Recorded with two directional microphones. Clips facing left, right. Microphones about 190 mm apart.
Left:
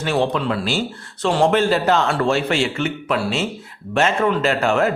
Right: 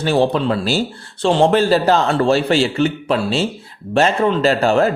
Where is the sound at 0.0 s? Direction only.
35° right (ahead or behind).